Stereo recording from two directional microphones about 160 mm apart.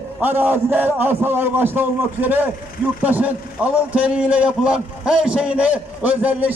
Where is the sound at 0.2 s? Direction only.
10° right (ahead or behind).